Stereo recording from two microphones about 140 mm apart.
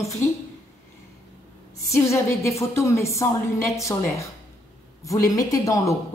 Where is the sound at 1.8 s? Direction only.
20° left (ahead or behind).